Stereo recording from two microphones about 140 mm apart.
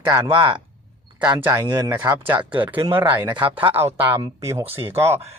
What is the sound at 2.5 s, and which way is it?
Speech, 35° right (ahead or behind).